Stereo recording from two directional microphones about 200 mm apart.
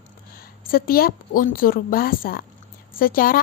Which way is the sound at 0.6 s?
45° left (ahead or behind).